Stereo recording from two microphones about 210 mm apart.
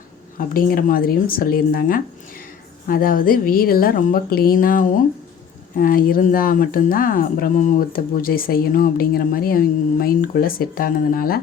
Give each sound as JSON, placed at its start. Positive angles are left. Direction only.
{"t": 0.3, "sound": "speech", "side_deg": 45}